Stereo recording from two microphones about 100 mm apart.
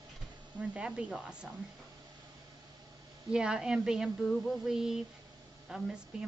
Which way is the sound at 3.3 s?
10° right (ahead or behind).